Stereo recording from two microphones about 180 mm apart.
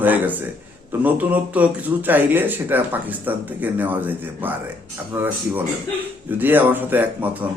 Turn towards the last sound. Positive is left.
turn(degrees=-10)  # may be behind; listen again after turning